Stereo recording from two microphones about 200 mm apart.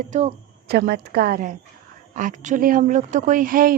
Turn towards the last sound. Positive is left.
turn(degrees=-45)  # may be behind; listen again after turning